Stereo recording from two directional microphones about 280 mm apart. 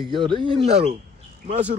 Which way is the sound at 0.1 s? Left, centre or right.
Centre.